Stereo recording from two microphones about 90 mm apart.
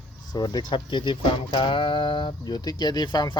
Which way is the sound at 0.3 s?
50° left (ahead or behind).